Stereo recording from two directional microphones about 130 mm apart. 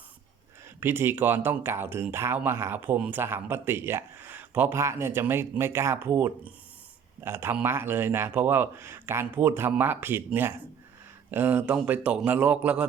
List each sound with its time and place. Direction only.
0.8 s speech: 15° right (ahead or behind)